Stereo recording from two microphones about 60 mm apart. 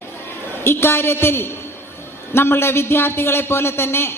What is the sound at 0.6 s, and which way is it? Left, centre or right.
A man's voice, left.